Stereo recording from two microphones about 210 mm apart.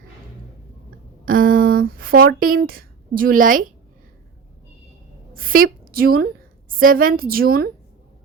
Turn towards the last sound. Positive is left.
turn(degrees=-45)  # may be behind; listen again after turning